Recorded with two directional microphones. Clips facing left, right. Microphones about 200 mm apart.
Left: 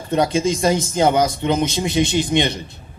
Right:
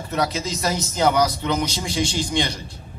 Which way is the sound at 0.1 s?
30° left (ahead or behind).